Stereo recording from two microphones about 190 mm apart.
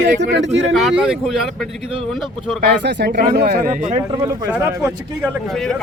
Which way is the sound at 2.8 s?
60° right (ahead or behind).